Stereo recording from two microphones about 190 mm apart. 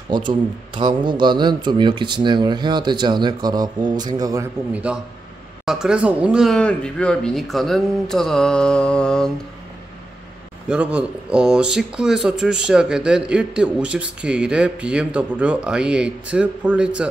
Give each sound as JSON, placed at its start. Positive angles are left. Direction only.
{"t": 0.1, "sound": "speech", "side_deg": -25}
{"t": 4.7, "sound": "speech", "side_deg": -5}
{"t": 10.7, "sound": "speech", "side_deg": -5}